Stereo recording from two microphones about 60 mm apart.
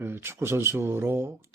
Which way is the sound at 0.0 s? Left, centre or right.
Right.